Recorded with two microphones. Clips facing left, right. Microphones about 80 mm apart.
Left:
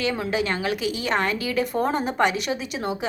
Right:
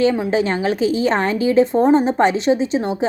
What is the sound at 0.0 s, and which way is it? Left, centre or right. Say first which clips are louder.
A woman's voice: right 8 dB; right.